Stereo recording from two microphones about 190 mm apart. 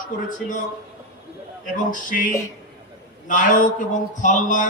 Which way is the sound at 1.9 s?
45° left (ahead or behind).